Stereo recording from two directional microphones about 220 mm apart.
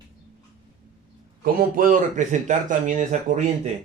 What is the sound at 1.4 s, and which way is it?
Speech, 40° right (ahead or behind).